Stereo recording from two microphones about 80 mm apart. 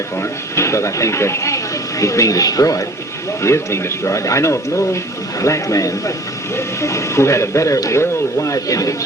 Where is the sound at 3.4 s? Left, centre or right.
Left.